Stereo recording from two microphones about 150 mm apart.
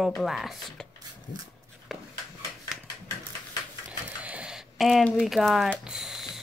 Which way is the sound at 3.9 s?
10° right (ahead or behind).